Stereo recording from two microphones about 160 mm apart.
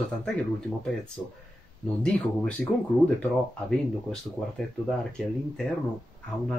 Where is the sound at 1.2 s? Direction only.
10° left (ahead or behind).